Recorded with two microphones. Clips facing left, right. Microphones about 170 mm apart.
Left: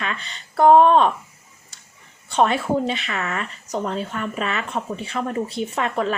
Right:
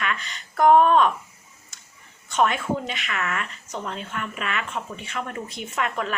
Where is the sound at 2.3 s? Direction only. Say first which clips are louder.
Left 3 dB; 30° left (ahead or behind).